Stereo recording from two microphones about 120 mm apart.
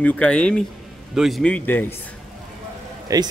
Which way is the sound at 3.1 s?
30° right (ahead or behind).